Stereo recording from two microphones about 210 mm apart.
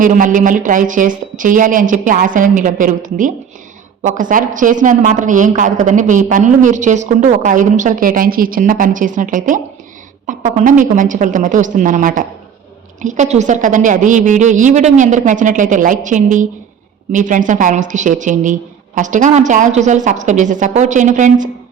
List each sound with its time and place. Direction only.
0.0 s a woman's voice: 40° right (ahead or behind)